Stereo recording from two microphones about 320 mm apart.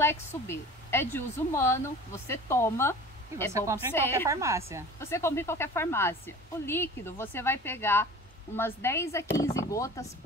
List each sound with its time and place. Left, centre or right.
0.0 s a woman's voice: centre
4.3 s a woman's voice: centre
4.9 s a woman's voice: centre